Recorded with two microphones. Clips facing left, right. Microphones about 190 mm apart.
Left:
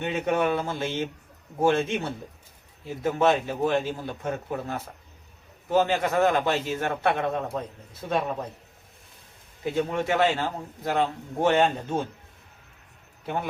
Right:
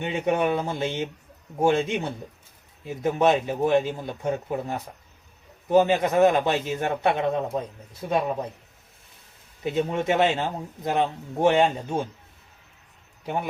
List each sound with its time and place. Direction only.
0.0 s a man's voice: 15° right (ahead or behind)
9.7 s a man's voice: 20° right (ahead or behind)
13.2 s a man's voice: 15° right (ahead or behind)